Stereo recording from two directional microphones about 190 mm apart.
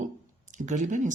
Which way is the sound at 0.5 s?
40° right (ahead or behind).